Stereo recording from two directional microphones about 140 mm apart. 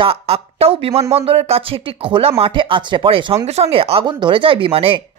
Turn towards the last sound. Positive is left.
turn(degrees=-40)  # may be behind; listen again after turning